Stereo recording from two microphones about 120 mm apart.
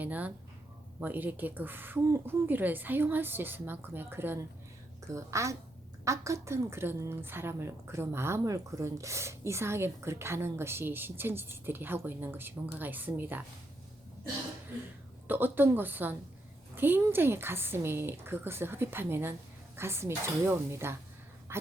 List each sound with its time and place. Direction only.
0.0 s a woman's voice: 15° right (ahead or behind)
15.3 s a woman's voice: 15° right (ahead or behind)
21.5 s a sound: 20° right (ahead or behind)